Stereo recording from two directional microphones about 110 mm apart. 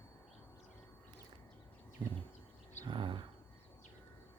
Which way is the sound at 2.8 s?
50° right (ahead or behind).